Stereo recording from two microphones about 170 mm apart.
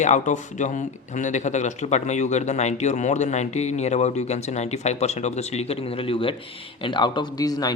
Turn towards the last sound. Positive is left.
turn(degrees=20)  # may be behind; listen again after turning